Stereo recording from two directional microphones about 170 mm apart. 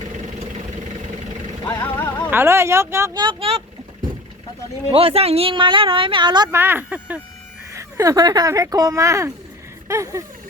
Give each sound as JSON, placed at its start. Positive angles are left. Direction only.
{"t": 1.8, "sound": "music", "side_deg": 10}
{"t": 2.3, "sound": "speech", "side_deg": -15}
{"t": 4.9, "sound": "speech", "side_deg": -35}
{"t": 6.5, "sound": "speech", "side_deg": -10}